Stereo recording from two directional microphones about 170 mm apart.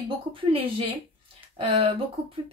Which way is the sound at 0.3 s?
30° right (ahead or behind).